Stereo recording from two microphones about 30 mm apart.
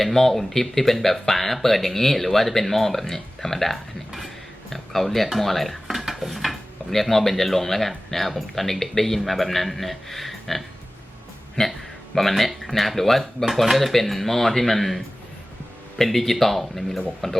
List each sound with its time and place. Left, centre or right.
0.0 s a man's voice: centre
6.0 s dishes: centre
6.9 s a man's voice: centre
11.6 s speech: centre
12.1 s a man's voice: centre